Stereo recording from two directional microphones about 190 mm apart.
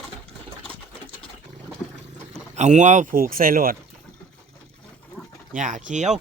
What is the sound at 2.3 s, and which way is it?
Speech, 40° right (ahead or behind).